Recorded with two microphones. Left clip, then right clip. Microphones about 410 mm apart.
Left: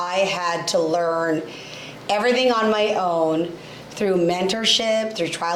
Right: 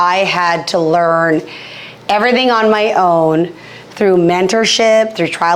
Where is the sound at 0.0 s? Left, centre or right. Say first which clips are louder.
Right 10 dB; right.